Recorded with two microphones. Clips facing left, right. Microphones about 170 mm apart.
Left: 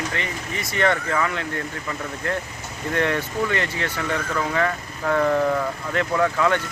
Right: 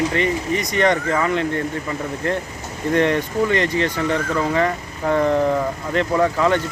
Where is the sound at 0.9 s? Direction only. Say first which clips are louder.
Right 2 dB; 20° right (ahead or behind).